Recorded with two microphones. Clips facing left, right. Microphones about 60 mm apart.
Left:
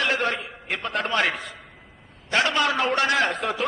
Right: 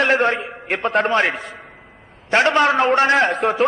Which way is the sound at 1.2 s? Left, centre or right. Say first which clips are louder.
Right 4 dB; right.